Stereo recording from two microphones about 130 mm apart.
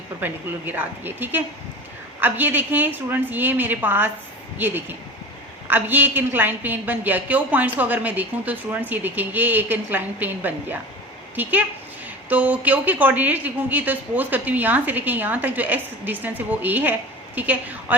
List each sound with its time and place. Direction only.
0.2 s a woman's voice: 15° right (ahead or behind)